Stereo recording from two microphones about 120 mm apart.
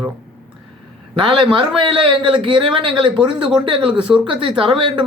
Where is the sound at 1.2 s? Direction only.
40° right (ahead or behind).